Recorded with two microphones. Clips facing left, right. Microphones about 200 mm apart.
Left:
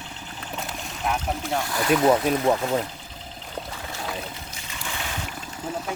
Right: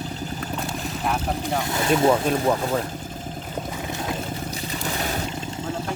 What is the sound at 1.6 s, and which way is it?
Speech, 25° right (ahead or behind).